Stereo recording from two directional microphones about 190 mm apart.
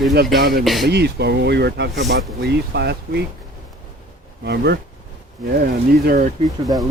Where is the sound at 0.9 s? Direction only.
60° right (ahead or behind).